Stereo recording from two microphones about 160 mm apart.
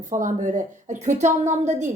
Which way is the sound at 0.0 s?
55° right (ahead or behind).